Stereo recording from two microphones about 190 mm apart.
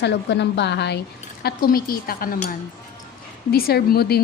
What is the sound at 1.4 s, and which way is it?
A woman's voice, 50° left (ahead or behind).